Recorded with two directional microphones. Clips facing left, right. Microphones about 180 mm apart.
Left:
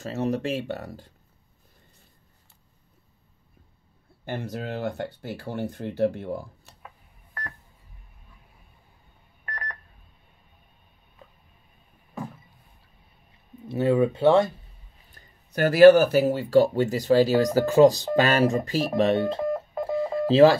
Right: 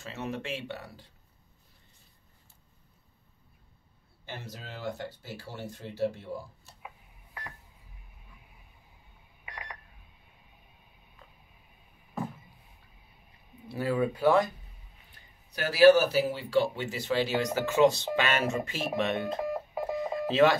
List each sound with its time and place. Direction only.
0.0 s speech: 40° left (ahead or behind)
4.2 s speech: 55° left (ahead or behind)
9.5 s telephone dialing: 5° right (ahead or behind)
13.7 s speech: 25° left (ahead or behind)
15.1 s speech: 50° left (ahead or behind); by 19.4 s 30° left (ahead or behind)
19.4 s telephone dialing: 5° right (ahead or behind)
20.2 s speech: 30° left (ahead or behind)